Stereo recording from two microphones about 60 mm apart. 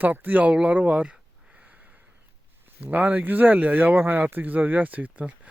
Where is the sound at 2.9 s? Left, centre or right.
Right.